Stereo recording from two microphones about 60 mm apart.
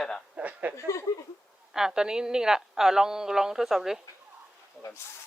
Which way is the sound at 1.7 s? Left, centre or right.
Centre.